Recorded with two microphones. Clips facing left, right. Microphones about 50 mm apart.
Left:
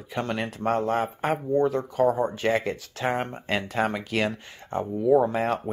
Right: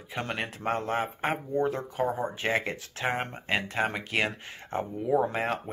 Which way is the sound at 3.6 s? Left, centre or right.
Centre.